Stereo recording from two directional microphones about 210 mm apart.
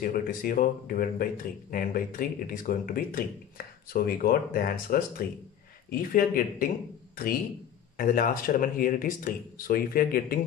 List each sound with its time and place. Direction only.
0.0 s speech: 45° left (ahead or behind)
8.0 s speech: 40° left (ahead or behind)